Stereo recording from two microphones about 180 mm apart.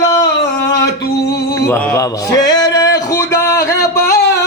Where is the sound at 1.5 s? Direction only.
15° left (ahead or behind).